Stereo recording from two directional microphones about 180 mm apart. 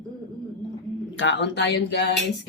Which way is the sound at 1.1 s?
85° left.